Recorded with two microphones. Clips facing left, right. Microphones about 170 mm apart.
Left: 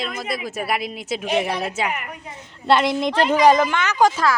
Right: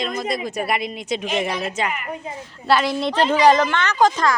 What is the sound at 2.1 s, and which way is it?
Speech, 30° right (ahead or behind).